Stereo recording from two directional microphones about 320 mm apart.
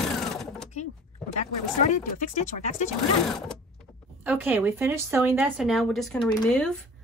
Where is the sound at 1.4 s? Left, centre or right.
Left.